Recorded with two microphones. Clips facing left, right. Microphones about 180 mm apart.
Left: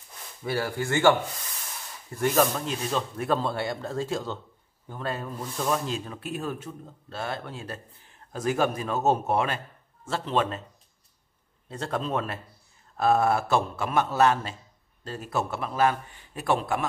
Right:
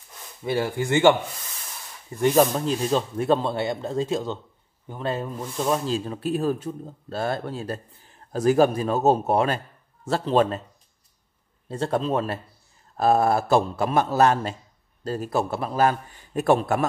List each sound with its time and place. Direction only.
0.4 s a man's voice: 20° right (ahead or behind)
2.5 s a man's voice: 30° right (ahead or behind)
5.9 s speech: 30° right (ahead or behind)
11.7 s speech: 30° right (ahead or behind)